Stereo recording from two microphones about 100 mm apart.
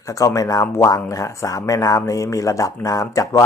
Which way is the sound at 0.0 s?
35° left (ahead or behind).